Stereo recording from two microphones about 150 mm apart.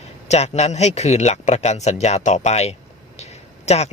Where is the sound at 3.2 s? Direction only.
45° left (ahead or behind).